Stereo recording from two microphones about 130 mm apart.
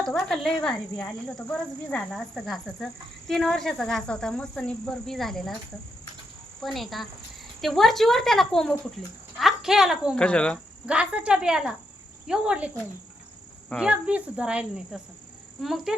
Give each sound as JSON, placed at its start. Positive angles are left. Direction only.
{"t": 0.0, "sound": "speech", "side_deg": 5}
{"t": 6.6, "sound": "a woman's voice", "side_deg": 5}
{"t": 10.2, "sound": "speech", "side_deg": 10}
{"t": 10.8, "sound": "speech", "side_deg": -10}
{"t": 13.7, "sound": "speech", "side_deg": -10}